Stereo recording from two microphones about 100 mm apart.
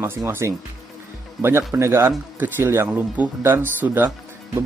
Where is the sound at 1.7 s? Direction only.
25° right (ahead or behind).